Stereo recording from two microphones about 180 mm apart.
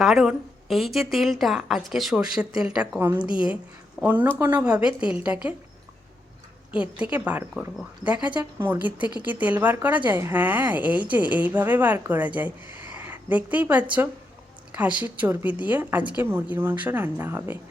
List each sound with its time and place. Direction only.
0.0 s a woman's voice: centre (ahead or behind)
3.2 s a woman's voice: 30° left (ahead or behind)
4.0 s a woman's voice: 10° right (ahead or behind)
6.7 s a woman's voice: 5° right (ahead or behind)